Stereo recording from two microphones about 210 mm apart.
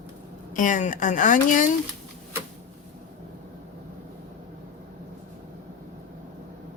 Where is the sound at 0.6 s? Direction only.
40° left (ahead or behind).